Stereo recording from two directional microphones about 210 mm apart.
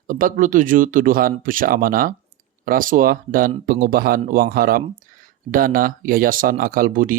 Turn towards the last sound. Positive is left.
turn(degrees=-40)  # may be behind; listen again after turning